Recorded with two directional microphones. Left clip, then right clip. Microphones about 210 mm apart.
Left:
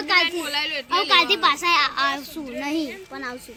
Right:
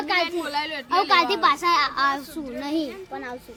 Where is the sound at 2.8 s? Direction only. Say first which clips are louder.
Left 1 dB; 45° left (ahead or behind).